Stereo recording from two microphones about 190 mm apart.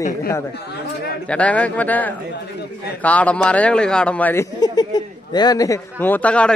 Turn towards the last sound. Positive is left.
turn(degrees=5)  # may be behind; listen again after turning